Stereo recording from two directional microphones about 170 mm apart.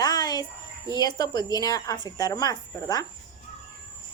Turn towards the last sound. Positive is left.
turn(degrees=20)  # may be behind; listen again after turning